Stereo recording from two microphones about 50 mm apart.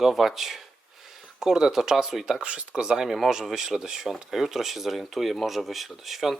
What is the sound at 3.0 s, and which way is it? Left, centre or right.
Speech, centre.